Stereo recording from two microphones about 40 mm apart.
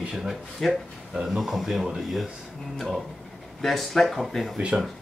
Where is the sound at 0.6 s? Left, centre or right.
Centre.